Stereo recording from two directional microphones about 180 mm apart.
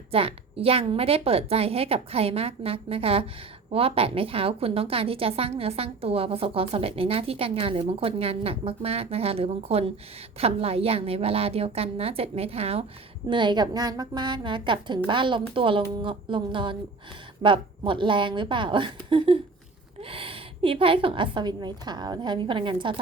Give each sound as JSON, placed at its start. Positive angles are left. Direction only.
{"t": 0.1, "sound": "a woman's voice", "side_deg": -30}